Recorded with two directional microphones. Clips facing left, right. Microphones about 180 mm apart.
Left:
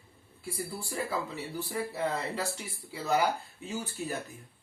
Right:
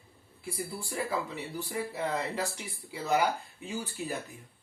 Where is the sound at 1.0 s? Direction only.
15° right (ahead or behind).